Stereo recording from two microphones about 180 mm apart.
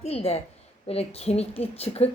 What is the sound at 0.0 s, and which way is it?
A woman's voice, 35° left (ahead or behind).